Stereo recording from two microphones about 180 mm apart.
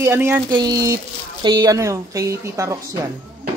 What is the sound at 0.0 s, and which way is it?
Speech, 15° right (ahead or behind).